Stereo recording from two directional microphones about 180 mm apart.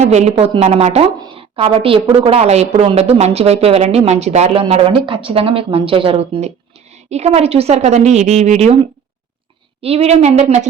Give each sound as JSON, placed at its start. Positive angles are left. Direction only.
{"t": 0.0, "sound": "speech", "side_deg": -40}
{"t": 9.8, "sound": "speech", "side_deg": -35}